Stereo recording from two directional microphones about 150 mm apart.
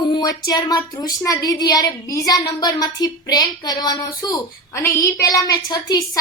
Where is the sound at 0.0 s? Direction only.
30° left (ahead or behind).